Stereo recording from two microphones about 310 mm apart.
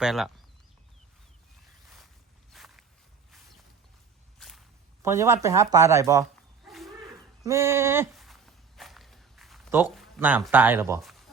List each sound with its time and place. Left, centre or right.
0.0 s speech: centre
1.8 s boat: centre
2.5 s walk: centre
4.4 s whip: centre
5.0 s speech: centre
6.7 s a sound: centre
7.4 s walk: centre